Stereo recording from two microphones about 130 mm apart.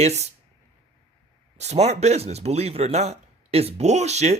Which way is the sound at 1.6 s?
60° right (ahead or behind).